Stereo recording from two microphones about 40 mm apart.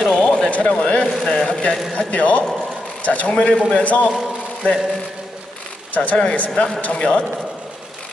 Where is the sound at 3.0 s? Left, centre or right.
Left.